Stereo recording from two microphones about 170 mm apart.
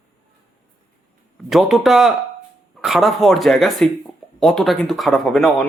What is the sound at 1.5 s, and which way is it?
Speech, centre (ahead or behind).